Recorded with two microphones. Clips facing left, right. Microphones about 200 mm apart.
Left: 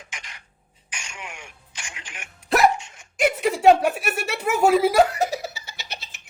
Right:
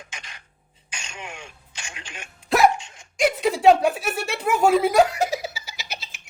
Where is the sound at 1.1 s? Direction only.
20° right (ahead or behind).